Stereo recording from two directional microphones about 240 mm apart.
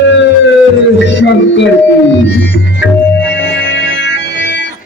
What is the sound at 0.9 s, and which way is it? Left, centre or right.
Music, left.